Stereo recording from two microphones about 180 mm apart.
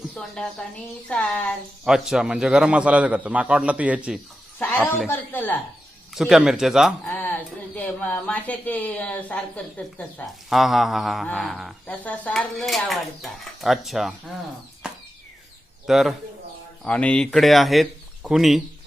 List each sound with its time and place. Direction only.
0.1 s speech: 5° left (ahead or behind)
5.0 s a woman's voice: 10° left (ahead or behind)
6.1 s speech: 5° right (ahead or behind)
7.0 s a sound: 10° left (ahead or behind)
7.8 s speech: 10° left (ahead or behind)
14.8 s a sound: 5° right (ahead or behind)
15.9 s speech: centre (ahead or behind)